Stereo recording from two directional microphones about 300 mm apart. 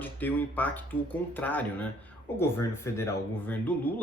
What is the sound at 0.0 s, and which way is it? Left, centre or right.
Speech, centre.